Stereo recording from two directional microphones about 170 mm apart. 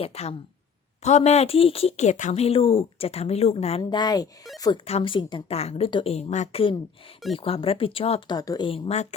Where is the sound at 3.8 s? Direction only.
25° left (ahead or behind).